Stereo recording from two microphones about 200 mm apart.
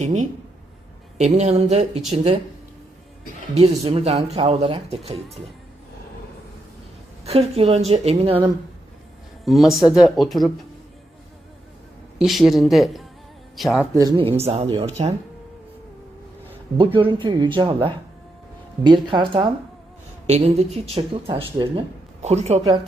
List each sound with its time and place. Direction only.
0.0 s speech: 35° right (ahead or behind)
3.5 s speech: 30° right (ahead or behind)
7.3 s speech: 30° right (ahead or behind)
9.4 s speech: centre (ahead or behind)
12.2 s speech: centre (ahead or behind)
13.9 s speech: 20° right (ahead or behind)
16.7 s speech: 25° right (ahead or behind)